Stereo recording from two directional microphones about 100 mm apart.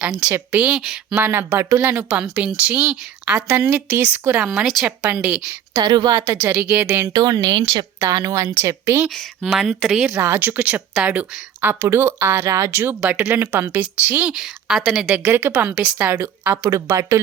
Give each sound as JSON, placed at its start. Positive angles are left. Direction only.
{"t": 0.3, "sound": "speech", "side_deg": -15}
{"t": 1.2, "sound": "speech", "side_deg": -20}
{"t": 1.8, "sound": "speech", "side_deg": -20}
{"t": 4.4, "sound": "speech", "side_deg": 0}
{"t": 5.7, "sound": "a woman's voice", "side_deg": -35}
{"t": 6.3, "sound": "speech", "side_deg": -15}
{"t": 7.1, "sound": "a woman's voice", "side_deg": -40}
{"t": 8.0, "sound": "speech", "side_deg": -35}
{"t": 9.6, "sound": "speech", "side_deg": -5}
{"t": 10.2, "sound": "speech", "side_deg": -20}
{"t": 15.1, "sound": "speech", "side_deg": -15}
{"t": 15.6, "sound": "a woman's voice", "side_deg": -10}